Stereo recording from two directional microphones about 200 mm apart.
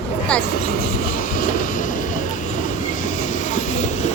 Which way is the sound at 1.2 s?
40° left (ahead or behind).